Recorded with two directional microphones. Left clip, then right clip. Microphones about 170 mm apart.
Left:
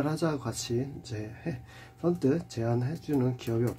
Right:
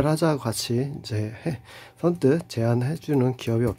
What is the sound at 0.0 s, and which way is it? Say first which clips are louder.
Speech: right 8 dB; 45° right (ahead or behind).